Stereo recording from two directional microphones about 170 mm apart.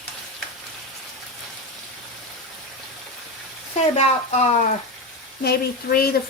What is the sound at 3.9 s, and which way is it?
Speech, 40° left (ahead or behind).